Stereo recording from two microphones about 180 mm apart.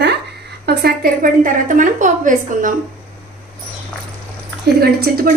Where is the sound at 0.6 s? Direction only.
65° right (ahead or behind); by 2.7 s 45° right (ahead or behind).